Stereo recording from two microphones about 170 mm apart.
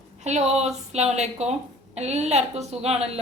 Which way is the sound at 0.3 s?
40° right (ahead or behind).